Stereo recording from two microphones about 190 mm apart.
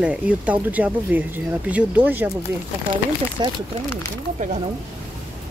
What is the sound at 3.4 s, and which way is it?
Speech, 25° right (ahead or behind).